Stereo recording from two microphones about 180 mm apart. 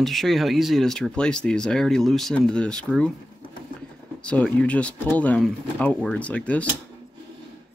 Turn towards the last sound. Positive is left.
turn(degrees=10)  # may be behind; listen again after turning